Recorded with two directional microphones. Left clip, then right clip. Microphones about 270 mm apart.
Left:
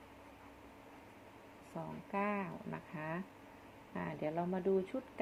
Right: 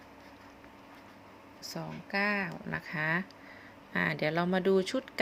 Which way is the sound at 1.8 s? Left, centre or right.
Centre.